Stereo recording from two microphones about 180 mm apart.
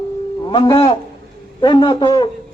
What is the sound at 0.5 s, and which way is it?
Speech, 25° left (ahead or behind).